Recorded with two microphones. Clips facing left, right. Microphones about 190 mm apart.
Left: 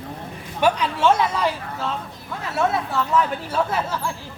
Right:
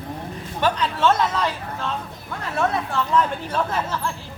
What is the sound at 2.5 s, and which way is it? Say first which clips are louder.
Speech: left 1 dB; 5° left (ahead or behind).